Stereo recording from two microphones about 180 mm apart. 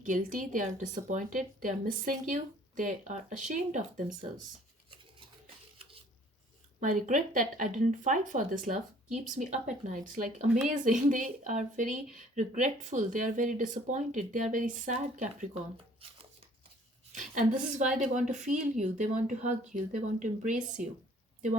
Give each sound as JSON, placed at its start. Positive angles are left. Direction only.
{"t": 0.0, "sound": "speech", "side_deg": -45}
{"t": 6.7, "sound": "speech", "side_deg": -45}
{"t": 17.1, "sound": "a woman's voice", "side_deg": -45}